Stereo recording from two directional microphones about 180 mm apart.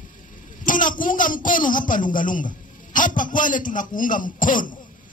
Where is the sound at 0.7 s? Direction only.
45° left (ahead or behind).